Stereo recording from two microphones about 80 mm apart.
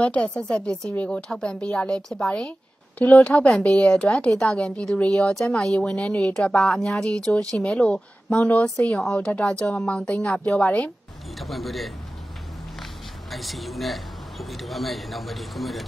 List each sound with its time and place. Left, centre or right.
0.0 s speech: centre
3.4 s a man's voice: centre
11.3 s a man's voice: centre
13.3 s a man's voice: centre